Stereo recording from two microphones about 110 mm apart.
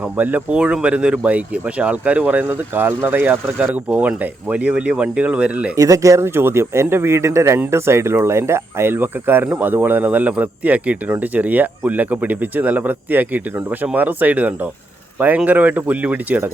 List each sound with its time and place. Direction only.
0.0 s speech: 15° right (ahead or behind)
5.7 s speech: 30° right (ahead or behind); by 16.5 s 15° right (ahead or behind)